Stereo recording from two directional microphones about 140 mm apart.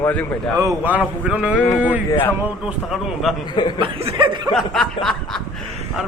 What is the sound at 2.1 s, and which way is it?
Speech, 15° left (ahead or behind).